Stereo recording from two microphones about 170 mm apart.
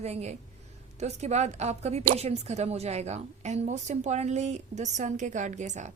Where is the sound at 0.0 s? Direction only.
40° right (ahead or behind).